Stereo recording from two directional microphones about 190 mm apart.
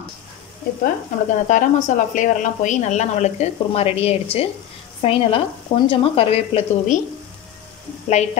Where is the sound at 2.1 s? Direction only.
40° left (ahead or behind).